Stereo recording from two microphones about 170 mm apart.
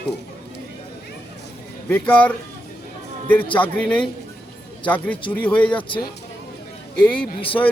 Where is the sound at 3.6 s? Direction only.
10° left (ahead or behind).